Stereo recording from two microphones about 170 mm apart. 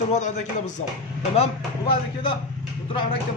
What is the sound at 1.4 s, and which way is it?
A man's voice, 30° left (ahead or behind).